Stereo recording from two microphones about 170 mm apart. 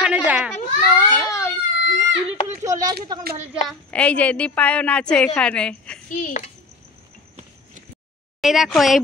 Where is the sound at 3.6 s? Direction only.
5° left (ahead or behind).